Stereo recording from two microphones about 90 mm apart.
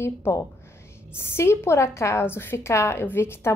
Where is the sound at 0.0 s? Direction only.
30° left (ahead or behind).